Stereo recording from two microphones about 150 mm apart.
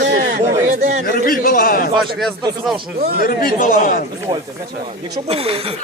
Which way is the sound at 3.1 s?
75° left (ahead or behind).